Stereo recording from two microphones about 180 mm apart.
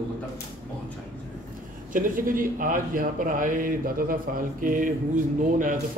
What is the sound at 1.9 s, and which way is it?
A man's voice, 50° right (ahead or behind).